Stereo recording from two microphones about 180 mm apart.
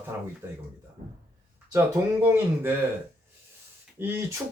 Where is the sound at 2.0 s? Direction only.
20° right (ahead or behind).